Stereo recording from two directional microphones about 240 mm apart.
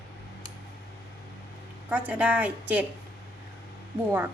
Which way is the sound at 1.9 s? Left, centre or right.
Centre.